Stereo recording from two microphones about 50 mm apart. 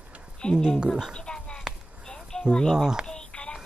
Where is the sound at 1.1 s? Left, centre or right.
Centre.